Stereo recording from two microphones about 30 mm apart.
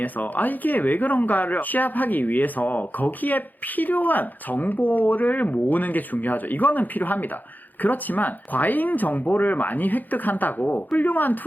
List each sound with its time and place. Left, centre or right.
0.0 s speech: left